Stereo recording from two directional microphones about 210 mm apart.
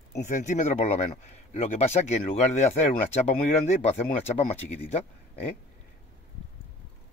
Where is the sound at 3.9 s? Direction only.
30° left (ahead or behind).